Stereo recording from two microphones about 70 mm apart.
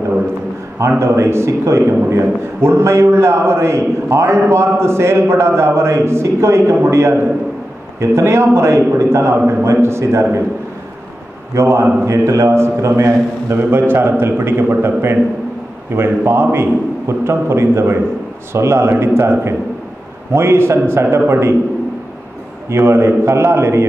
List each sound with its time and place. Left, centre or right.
0.7 s a man's voice: right
11.5 s a man's voice: right
22.7 s a man's voice: right